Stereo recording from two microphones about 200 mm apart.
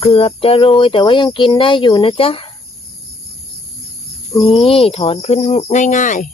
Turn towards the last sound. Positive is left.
turn(degrees=40)  # may be behind; listen again after turning